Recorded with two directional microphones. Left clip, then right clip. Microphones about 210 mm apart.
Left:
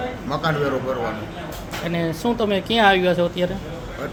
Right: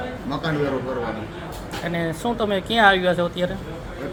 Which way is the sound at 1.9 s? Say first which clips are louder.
Left 2 dB; 15° left (ahead or behind).